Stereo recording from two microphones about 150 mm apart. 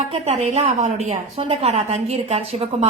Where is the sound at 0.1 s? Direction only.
45° right (ahead or behind).